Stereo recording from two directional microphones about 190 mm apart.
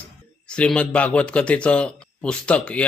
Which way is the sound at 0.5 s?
5° left (ahead or behind).